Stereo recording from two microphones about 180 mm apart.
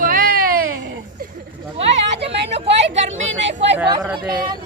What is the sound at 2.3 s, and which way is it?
Speech, 70° right (ahead or behind).